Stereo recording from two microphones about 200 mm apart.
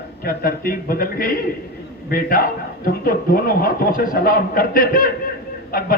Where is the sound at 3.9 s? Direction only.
45° left (ahead or behind).